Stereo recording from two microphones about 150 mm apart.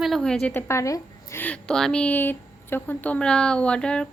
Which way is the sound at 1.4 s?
5° left (ahead or behind).